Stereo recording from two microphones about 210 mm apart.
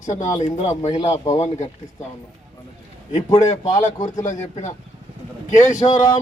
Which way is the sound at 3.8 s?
35° left (ahead or behind).